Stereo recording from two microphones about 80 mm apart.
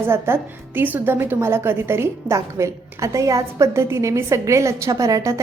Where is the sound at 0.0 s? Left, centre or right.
Right.